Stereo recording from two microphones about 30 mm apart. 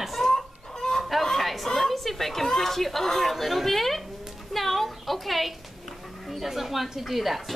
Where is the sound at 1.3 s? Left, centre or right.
Centre.